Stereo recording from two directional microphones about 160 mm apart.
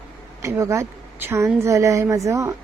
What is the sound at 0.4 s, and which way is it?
A woman's voice, 15° right (ahead or behind).